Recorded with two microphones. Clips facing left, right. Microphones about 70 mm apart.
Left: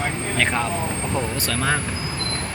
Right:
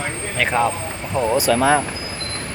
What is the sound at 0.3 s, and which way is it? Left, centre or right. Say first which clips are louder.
Speech: right 5 dB; centre.